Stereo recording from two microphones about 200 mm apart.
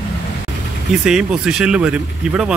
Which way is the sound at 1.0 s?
5° right (ahead or behind).